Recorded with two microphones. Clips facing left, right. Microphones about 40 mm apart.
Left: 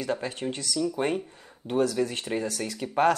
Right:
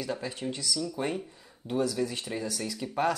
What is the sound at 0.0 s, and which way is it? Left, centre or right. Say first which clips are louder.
Speech: left 4 dB; left.